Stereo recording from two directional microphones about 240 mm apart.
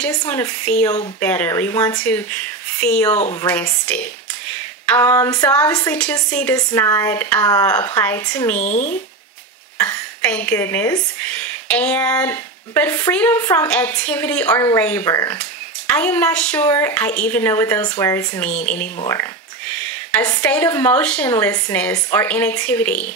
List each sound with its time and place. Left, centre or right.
0.0 s speech: centre
8.5 s speech: left
9.8 s speech: centre
19.8 s speech: centre